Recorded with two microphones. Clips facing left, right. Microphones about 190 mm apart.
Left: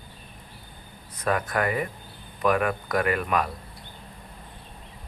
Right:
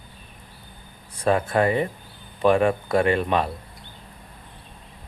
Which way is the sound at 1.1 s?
30° right (ahead or behind).